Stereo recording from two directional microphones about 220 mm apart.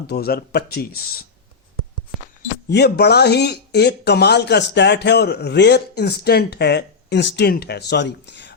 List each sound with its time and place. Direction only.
0.1 s speech: 45° left (ahead or behind)
2.1 s a sound: centre (ahead or behind)
2.6 s speech: 45° left (ahead or behind)